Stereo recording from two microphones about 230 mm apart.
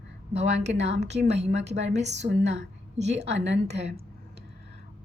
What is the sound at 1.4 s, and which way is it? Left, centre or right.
A woman's voice, right.